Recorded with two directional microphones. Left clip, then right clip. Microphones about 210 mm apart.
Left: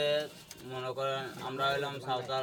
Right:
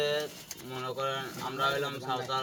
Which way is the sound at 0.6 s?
20° left (ahead or behind).